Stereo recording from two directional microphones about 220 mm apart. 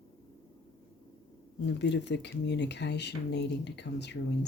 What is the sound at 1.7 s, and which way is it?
Speech, 50° left (ahead or behind).